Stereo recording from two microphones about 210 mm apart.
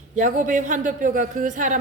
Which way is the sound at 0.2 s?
40° right (ahead or behind).